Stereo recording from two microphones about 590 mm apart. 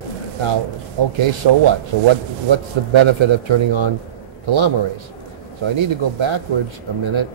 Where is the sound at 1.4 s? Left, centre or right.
Right.